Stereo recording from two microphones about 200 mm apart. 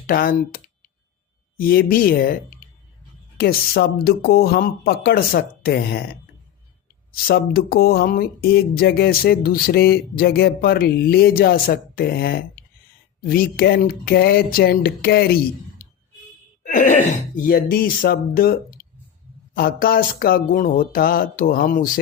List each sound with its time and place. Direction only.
0.1 s speech: 45° left (ahead or behind)
7.3 s speech: 45° left (ahead or behind)
15.8 s a sound: 45° left (ahead or behind)
16.6 s speech: 40° left (ahead or behind)